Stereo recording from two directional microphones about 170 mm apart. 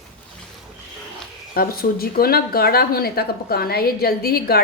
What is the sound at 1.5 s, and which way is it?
Speech, 60° left (ahead or behind).